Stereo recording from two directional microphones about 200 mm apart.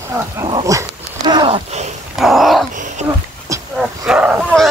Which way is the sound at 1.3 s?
25° right (ahead or behind).